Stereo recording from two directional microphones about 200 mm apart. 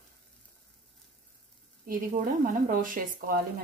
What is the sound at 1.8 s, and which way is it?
Speech, 45° right (ahead or behind).